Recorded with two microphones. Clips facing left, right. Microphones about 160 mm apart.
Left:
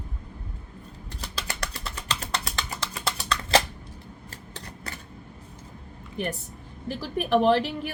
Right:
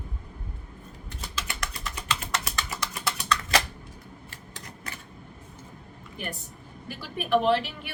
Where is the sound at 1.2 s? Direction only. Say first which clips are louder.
Left 1 dB; 35° left (ahead or behind).